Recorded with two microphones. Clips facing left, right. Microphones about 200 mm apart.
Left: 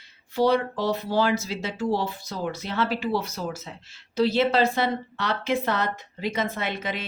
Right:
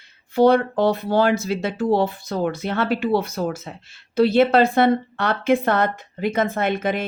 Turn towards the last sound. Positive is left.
turn(degrees=-50)  # may be behind; listen again after turning